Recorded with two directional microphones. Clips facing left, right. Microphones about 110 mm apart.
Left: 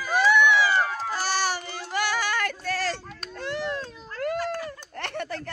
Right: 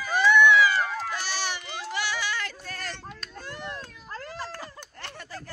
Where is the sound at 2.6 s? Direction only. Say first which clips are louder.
Left 9 dB; 90° left.